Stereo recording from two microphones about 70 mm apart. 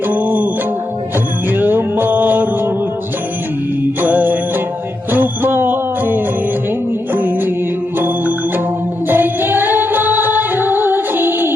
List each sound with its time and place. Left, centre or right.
0.1 s music: right
1.5 s music: right
4.0 s music: right
9.0 s music: right